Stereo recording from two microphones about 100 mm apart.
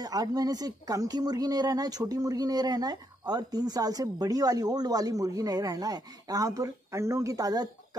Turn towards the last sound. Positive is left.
turn(degrees=-40)  # may be behind; listen again after turning